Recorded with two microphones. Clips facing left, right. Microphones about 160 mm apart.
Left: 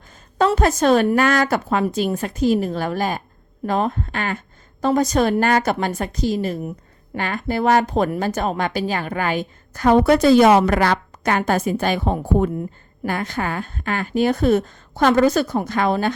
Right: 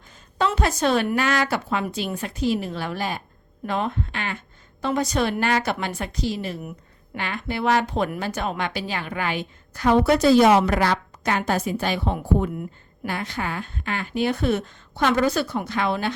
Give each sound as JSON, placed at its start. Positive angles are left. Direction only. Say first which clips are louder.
{"t": 0.3, "sound": "a woman's voice", "louder": "left 6 dB", "side_deg": 45}